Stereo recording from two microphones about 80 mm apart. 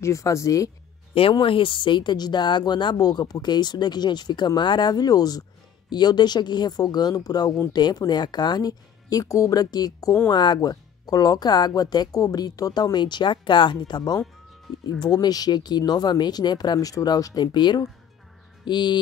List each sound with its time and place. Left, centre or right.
0.0 s speech: left
1.4 s speech: left
5.9 s speech: left
10.3 s speech: left
18.7 s music: left